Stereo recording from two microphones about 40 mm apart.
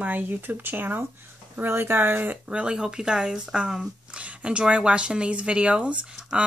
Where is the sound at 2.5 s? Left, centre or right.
Right.